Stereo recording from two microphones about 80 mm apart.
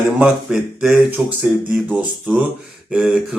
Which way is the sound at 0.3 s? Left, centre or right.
Centre.